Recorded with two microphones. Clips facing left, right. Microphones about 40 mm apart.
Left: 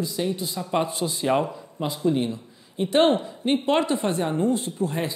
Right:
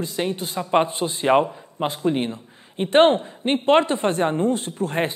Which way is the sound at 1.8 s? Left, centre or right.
Right.